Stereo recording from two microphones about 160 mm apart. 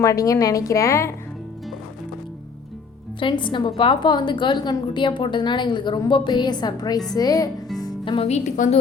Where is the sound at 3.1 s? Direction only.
30° left (ahead or behind).